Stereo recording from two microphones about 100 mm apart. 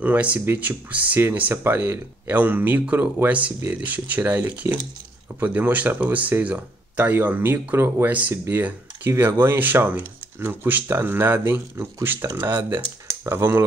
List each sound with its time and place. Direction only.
0.0 s speech: 15° right (ahead or behind)